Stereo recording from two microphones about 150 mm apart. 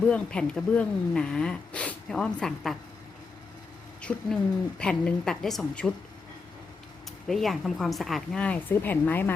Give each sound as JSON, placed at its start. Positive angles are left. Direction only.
{"t": 0.1, "sound": "speech", "side_deg": 5}
{"t": 4.1, "sound": "speech", "side_deg": 10}
{"t": 7.3, "sound": "speech", "side_deg": 0}